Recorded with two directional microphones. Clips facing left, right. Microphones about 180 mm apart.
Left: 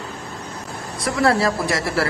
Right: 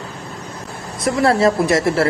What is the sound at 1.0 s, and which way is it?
Speech, 25° right (ahead or behind).